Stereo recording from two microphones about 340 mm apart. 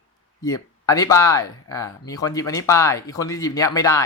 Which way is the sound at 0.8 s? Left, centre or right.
Centre.